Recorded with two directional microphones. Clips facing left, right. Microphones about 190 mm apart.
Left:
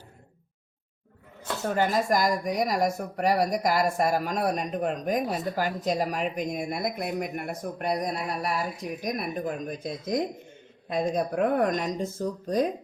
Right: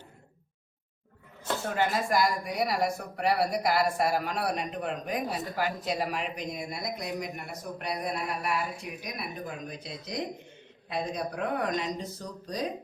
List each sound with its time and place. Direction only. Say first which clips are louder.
1.7 s speech: left 4 dB; 40° left (ahead or behind)